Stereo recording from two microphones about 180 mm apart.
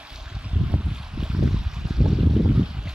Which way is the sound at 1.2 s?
5° right (ahead or behind).